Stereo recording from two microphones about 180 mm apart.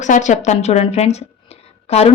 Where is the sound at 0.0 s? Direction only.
40° left (ahead or behind).